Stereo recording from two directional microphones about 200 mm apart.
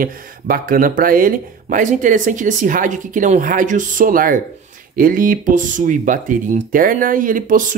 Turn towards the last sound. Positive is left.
turn(degrees=-40)  # may be behind; listen again after turning